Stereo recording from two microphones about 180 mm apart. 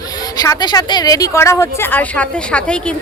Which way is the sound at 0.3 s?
20° left (ahead or behind).